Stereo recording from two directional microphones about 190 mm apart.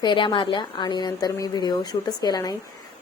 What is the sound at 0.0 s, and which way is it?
A woman's voice, 25° left (ahead or behind).